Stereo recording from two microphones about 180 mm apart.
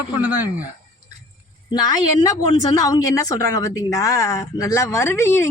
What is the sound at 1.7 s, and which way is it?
Speech, 20° left (ahead or behind).